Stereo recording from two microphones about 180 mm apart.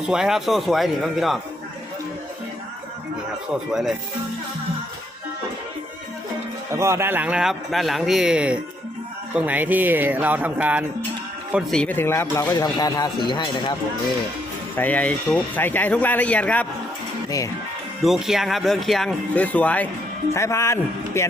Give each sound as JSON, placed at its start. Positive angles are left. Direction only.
{"t": 0.1, "sound": "speech", "side_deg": -5}
{"t": 3.7, "sound": "speech", "side_deg": 0}
{"t": 6.7, "sound": "speech", "side_deg": -15}
{"t": 11.7, "sound": "speech", "side_deg": 5}
{"t": 14.8, "sound": "speech", "side_deg": 10}
{"t": 18.0, "sound": "speech", "side_deg": 0}